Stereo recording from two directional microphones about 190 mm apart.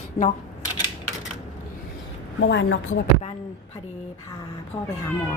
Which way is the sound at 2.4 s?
75° left (ahead or behind).